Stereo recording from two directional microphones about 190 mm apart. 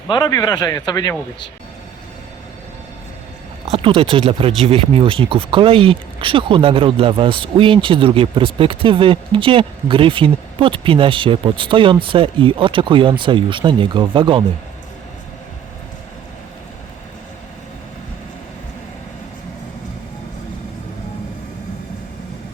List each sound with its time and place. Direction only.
0.1 s speech: 20° left (ahead or behind)
3.7 s speech: 30° right (ahead or behind)